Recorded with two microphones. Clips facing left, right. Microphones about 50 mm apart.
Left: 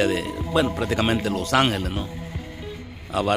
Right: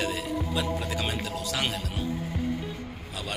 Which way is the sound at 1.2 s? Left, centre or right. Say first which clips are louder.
Left 11 dB; left.